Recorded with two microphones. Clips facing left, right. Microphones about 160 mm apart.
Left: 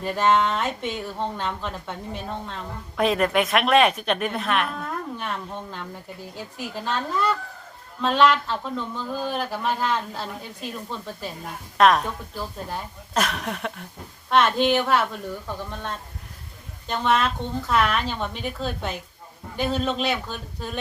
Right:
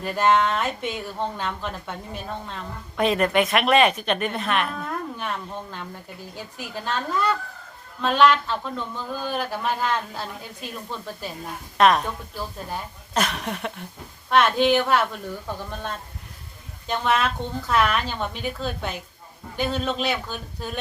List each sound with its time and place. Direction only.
0.0 s speech: centre (ahead or behind)
16.8 s speech: centre (ahead or behind)